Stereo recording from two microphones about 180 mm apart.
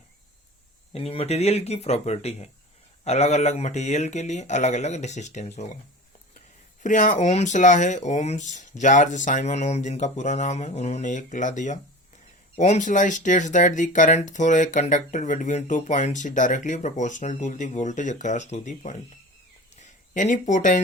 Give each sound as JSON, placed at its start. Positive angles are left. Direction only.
{"t": 0.9, "sound": "speech", "side_deg": 35}
{"t": 6.8, "sound": "speech", "side_deg": 45}
{"t": 19.7, "sound": "a sound", "side_deg": 40}